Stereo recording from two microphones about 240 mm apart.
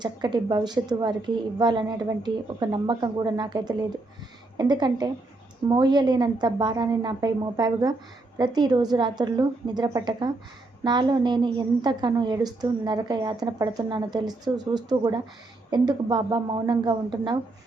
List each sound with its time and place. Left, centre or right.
0.0 s a woman's voice: centre